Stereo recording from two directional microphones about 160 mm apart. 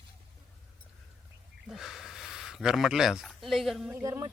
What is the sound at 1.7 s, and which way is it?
Speech, centre (ahead or behind).